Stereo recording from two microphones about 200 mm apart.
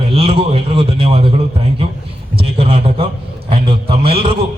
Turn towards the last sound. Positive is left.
turn(degrees=-30)  # may be behind; listen again after turning